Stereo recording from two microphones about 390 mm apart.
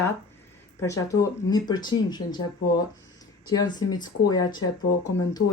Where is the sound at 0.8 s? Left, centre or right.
Centre.